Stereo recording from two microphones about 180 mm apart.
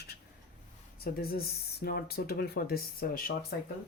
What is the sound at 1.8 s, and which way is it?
Dishes, 60° left (ahead or behind).